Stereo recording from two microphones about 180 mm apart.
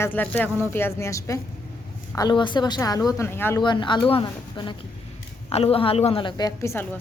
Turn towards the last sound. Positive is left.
turn(degrees=15)  # may be behind; listen again after turning